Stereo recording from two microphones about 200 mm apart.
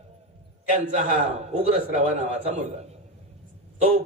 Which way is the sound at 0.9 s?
35° right (ahead or behind).